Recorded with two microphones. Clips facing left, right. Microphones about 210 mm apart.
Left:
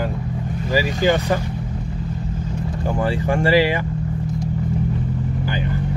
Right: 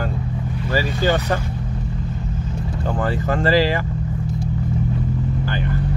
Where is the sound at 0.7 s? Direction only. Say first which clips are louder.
Left 2 dB; 15° left (ahead or behind).